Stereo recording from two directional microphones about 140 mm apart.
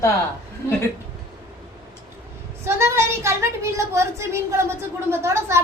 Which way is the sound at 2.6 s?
20° right (ahead or behind).